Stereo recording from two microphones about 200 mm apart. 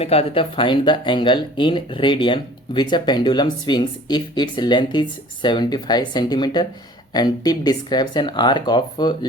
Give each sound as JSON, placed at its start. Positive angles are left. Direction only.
{"t": 0.0, "sound": "speech", "side_deg": 30}